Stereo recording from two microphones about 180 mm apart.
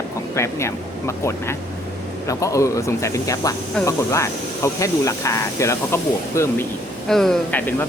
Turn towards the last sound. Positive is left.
turn(degrees=10)  # may be behind; listen again after turning